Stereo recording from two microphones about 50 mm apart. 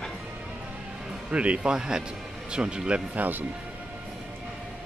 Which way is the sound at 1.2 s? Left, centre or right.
Right.